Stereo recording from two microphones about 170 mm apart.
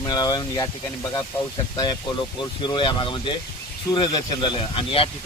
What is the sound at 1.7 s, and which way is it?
Speech, 25° left (ahead or behind).